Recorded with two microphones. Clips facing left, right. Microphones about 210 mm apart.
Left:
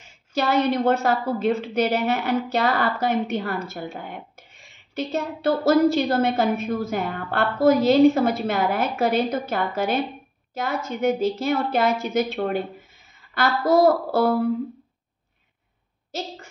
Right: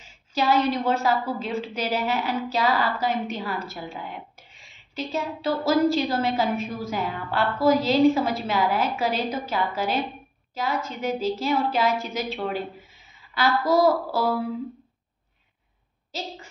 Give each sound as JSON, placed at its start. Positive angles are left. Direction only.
{"t": 0.3, "sound": "a woman's voice", "side_deg": 55}